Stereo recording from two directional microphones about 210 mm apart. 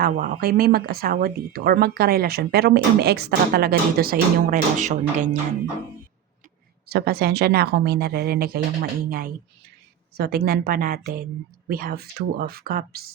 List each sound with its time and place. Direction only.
0.0 s speech: 45° right (ahead or behind)
6.8 s speech: 45° right (ahead or behind)